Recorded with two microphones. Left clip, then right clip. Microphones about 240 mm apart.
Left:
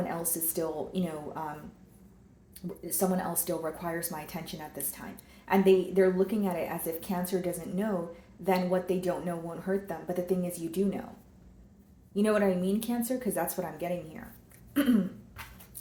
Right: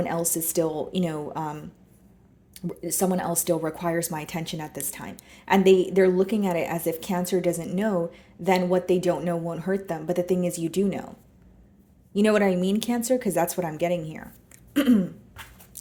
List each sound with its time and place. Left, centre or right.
0.1 s speech: right
2.6 s speech: right
12.1 s speech: right